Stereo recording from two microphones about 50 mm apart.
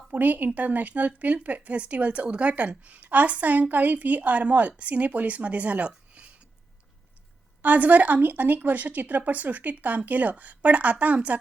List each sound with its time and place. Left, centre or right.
0.1 s speech: right
7.6 s speech: right